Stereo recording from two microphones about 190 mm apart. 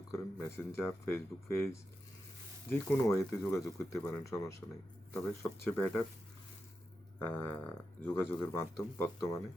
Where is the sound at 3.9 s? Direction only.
15° left (ahead or behind).